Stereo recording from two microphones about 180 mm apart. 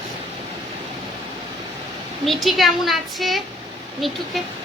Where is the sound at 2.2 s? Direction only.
Centre (ahead or behind).